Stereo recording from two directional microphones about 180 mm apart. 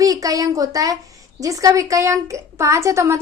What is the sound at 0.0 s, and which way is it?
A woman's voice, 20° right (ahead or behind).